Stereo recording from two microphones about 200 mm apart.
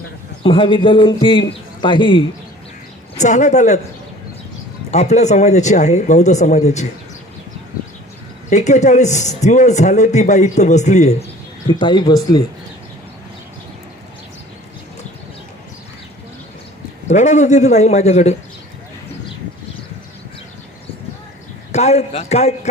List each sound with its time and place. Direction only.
0.4 s a man's voice: 25° left (ahead or behind)
3.2 s a man's voice: 35° left (ahead or behind)
4.9 s a man's voice: 35° left (ahead or behind)
8.4 s a man's voice: 35° left (ahead or behind)
11.7 s a man's voice: 25° left (ahead or behind)
17.1 s a man's voice: 35° left (ahead or behind)
21.7 s a man's voice: 35° left (ahead or behind)